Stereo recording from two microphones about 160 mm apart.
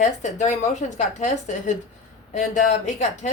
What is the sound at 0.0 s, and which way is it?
A woman's voice, 50° left (ahead or behind).